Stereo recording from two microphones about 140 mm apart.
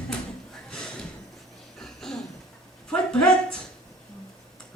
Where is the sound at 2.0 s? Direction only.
5° left (ahead or behind).